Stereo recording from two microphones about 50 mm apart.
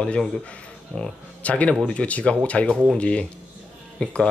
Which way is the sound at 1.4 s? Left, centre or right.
Left.